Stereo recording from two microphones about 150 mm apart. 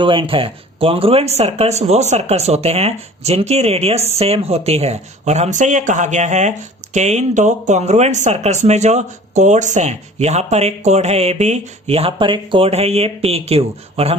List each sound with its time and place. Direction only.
0.0 s speech: 35° right (ahead or behind)